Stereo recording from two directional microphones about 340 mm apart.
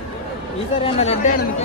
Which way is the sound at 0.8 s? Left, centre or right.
Centre.